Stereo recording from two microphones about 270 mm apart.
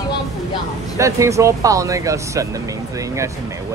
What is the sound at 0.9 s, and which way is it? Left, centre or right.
Speech, centre.